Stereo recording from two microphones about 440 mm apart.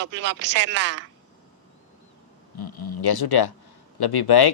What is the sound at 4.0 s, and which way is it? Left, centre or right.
Speech, left.